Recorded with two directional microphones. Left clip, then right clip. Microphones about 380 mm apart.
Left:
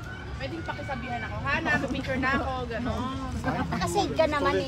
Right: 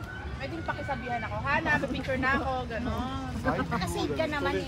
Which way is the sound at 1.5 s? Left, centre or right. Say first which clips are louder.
Left 1 dB; centre.